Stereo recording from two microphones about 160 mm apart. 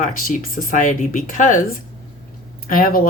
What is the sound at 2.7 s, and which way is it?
Speech, 60° left (ahead or behind).